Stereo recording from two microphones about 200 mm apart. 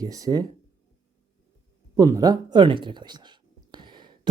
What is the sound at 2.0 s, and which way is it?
Speech, 20° right (ahead or behind).